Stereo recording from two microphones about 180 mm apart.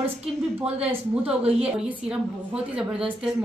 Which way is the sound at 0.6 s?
10° right (ahead or behind).